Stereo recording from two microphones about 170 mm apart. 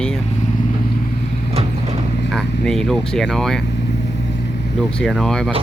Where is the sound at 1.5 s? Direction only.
40° right (ahead or behind).